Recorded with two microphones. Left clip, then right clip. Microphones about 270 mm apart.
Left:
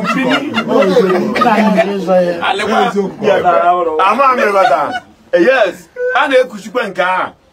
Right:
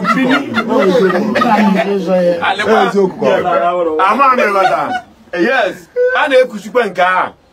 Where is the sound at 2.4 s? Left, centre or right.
Left.